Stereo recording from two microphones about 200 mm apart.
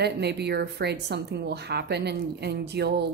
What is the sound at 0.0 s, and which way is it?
Speech, 55° right (ahead or behind).